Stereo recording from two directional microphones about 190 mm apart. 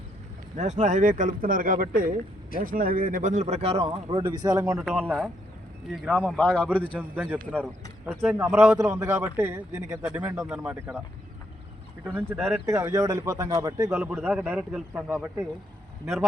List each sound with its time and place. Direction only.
0.5 s speech: 35° right (ahead or behind); by 4.6 s 20° right (ahead or behind)
4.8 s a man's voice: centre (ahead or behind)
7.2 s a man's voice: 10° right (ahead or behind)
8.5 s a man's voice: 15° right (ahead or behind)
10.0 s a man's voice: 5° right (ahead or behind)
12.0 s a man's voice: 10° right (ahead or behind)
12.4 s a man's voice: centre (ahead or behind)
12.6 s a man's voice: 15° right (ahead or behind)
13.9 s a man's voice: 5° right (ahead or behind)